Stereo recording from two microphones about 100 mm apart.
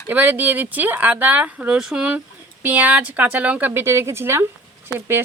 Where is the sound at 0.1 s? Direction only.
15° right (ahead or behind).